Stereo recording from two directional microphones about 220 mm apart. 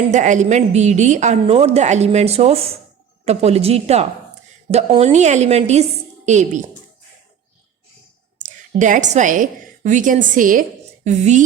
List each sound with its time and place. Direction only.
0.1 s a woman's voice: 35° right (ahead or behind)
8.4 s a woman's voice: 35° right (ahead or behind)